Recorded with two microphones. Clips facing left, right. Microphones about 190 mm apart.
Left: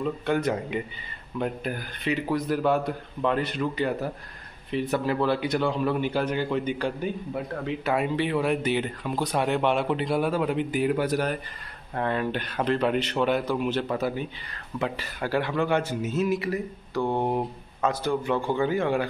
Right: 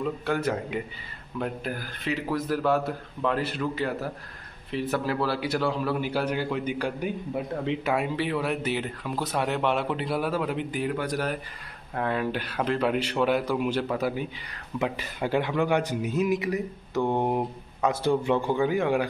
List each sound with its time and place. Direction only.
0.0 s a man's voice: centre (ahead or behind); by 7.9 s 20° right (ahead or behind)
7.9 s speech: 5° right (ahead or behind)
11.9 s a man's voice: 5° right (ahead or behind)